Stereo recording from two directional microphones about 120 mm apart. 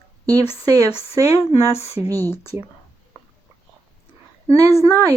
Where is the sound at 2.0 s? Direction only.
25° right (ahead or behind).